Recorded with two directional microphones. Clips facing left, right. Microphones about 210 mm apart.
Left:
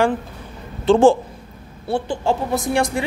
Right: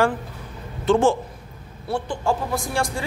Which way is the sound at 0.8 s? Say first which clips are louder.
Left 5 dB; 30° left (ahead or behind).